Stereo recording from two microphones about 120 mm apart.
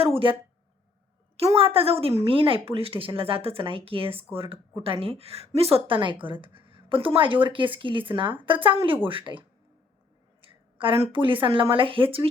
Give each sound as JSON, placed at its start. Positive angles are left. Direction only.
{"t": 0.0, "sound": "speech", "side_deg": -50}
{"t": 1.4, "sound": "speech", "side_deg": -55}
{"t": 10.4, "sound": "a woman's voice", "side_deg": -45}